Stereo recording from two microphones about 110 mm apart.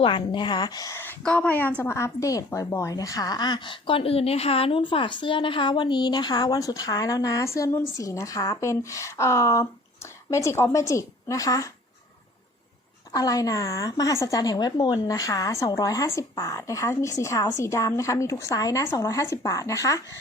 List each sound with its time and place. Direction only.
0.0 s a woman's voice: 45° left (ahead or behind)
1.2 s a woman's voice: 10° left (ahead or behind); by 11.7 s 30° left (ahead or behind)
13.1 s a woman's voice: 35° left (ahead or behind)